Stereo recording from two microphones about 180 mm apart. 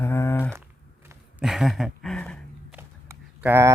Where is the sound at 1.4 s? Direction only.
Centre (ahead or behind).